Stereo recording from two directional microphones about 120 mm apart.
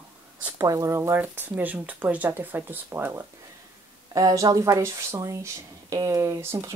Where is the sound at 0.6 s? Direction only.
25° right (ahead or behind).